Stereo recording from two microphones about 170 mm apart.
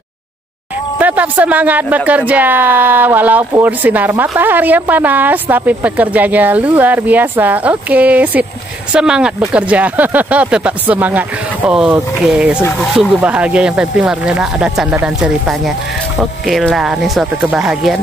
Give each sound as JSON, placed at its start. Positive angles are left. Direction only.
{"t": 0.9, "sound": "speech", "side_deg": -10}